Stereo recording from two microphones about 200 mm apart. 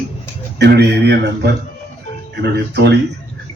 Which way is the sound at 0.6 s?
55° right (ahead or behind).